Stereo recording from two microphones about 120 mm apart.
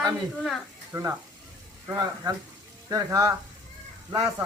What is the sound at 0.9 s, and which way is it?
Speech, 25° right (ahead or behind).